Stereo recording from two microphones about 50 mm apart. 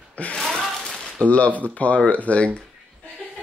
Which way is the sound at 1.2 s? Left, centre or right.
Left.